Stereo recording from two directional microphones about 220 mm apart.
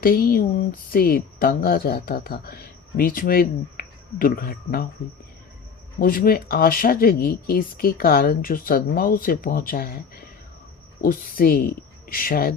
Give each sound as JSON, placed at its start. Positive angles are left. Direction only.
{"t": 0.0, "sound": "speech", "side_deg": 40}
{"t": 6.0, "sound": "speech", "side_deg": 40}
{"t": 11.0, "sound": "speech", "side_deg": 40}